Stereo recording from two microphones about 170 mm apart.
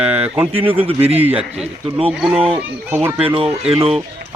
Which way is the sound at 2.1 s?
5° right (ahead or behind).